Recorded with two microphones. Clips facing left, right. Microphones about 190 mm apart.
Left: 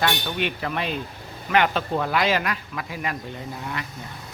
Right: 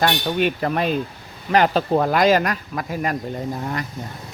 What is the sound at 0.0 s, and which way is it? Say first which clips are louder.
Speech: right 5 dB; 40° right (ahead or behind).